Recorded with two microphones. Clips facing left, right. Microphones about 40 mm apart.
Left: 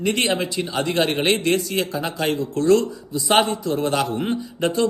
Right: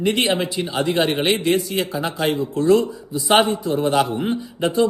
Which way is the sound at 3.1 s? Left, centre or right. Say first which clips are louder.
Right 2 dB; right.